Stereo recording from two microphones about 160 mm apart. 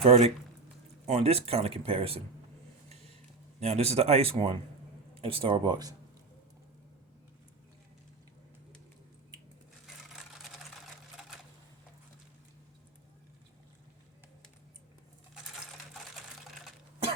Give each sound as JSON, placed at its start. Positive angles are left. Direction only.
{"t": 0.0, "sound": "speech", "side_deg": -40}
{"t": 3.6, "sound": "speech", "side_deg": -40}